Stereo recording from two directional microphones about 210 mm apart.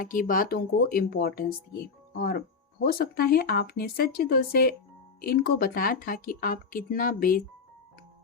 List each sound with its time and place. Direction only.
0.0 s speech: 40° left (ahead or behind)